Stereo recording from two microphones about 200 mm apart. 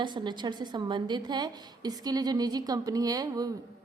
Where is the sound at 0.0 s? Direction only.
20° right (ahead or behind).